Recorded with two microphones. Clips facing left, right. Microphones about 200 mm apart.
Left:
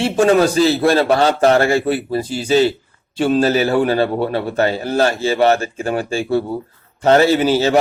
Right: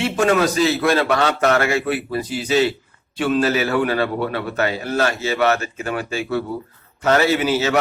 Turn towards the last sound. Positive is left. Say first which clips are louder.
# left 4 dB
turn(degrees=30)  # may be behind; listen again after turning